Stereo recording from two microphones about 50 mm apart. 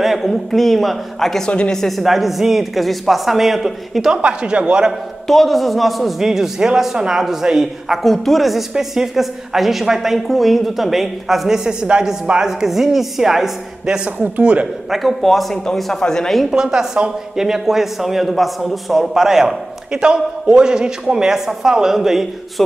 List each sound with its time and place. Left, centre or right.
0.0 s a woman's voice: centre
4.2 s speech: right
5.2 s a woman's voice: centre
8.0 s a woman's voice: centre
14.1 s speech: right
14.9 s a woman's voice: centre
16.3 s speech: centre